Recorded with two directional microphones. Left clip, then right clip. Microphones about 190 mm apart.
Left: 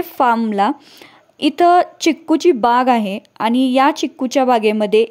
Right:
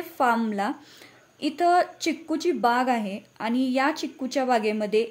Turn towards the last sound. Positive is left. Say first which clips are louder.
# left 9 dB
turn(degrees=45)  # may be behind; listen again after turning